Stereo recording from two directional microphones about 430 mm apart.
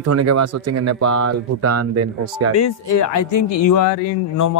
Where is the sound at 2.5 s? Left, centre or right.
Left.